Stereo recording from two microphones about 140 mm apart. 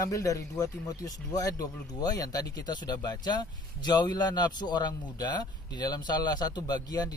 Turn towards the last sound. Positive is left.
turn(degrees=30)  # may be behind; listen again after turning